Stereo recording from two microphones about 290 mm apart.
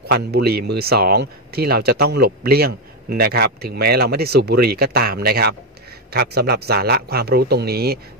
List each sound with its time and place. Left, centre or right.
0.1 s speech: right